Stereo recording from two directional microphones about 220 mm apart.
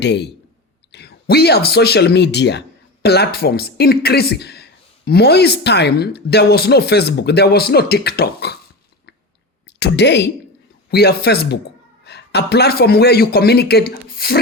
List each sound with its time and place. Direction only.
0.0 s speech: 50° left (ahead or behind)